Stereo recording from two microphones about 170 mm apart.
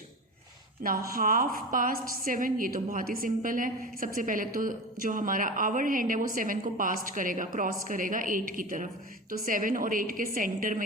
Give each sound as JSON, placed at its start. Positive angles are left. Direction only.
{"t": 0.8, "sound": "a woman's voice", "side_deg": -55}